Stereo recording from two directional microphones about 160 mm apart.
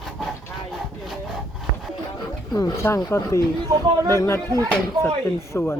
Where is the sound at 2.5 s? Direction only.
20° left (ahead or behind).